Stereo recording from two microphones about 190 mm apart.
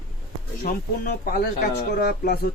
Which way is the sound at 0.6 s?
50° left (ahead or behind).